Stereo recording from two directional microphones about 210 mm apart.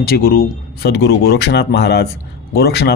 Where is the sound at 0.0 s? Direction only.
45° left (ahead or behind).